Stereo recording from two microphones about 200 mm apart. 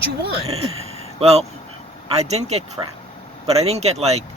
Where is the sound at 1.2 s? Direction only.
30° right (ahead or behind).